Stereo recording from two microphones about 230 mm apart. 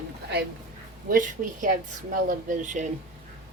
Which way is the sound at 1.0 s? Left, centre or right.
Right.